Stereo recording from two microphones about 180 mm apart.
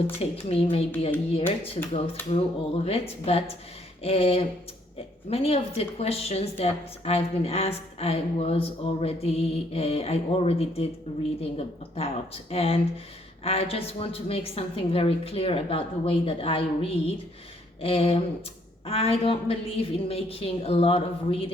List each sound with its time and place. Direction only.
0.2 s speech: 35° left (ahead or behind)